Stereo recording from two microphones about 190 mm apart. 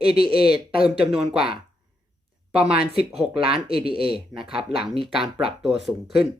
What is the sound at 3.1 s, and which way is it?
Speech, 30° right (ahead or behind).